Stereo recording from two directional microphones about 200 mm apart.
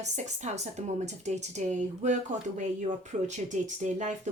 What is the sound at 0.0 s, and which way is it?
Speech, 35° right (ahead or behind).